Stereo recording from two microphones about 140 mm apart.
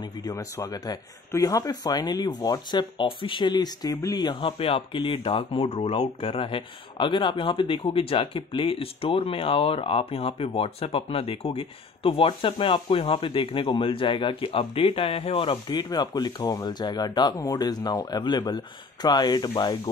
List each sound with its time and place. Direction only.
0.2 s speech: 25° left (ahead or behind)